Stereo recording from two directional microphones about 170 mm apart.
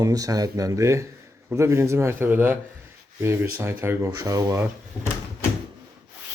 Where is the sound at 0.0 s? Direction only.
20° right (ahead or behind).